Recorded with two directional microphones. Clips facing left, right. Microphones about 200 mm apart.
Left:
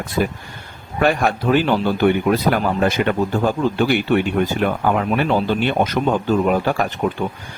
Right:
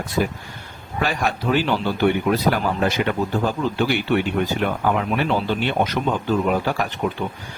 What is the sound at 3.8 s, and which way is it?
Speech, 50° left (ahead or behind).